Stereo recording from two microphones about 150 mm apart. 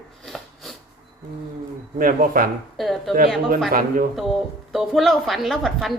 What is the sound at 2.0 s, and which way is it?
Speech, 65° right (ahead or behind).